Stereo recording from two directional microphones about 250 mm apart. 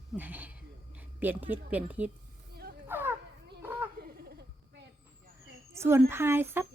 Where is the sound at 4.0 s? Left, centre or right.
Right.